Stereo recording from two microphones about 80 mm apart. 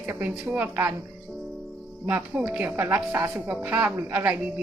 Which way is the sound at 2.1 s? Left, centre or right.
Right.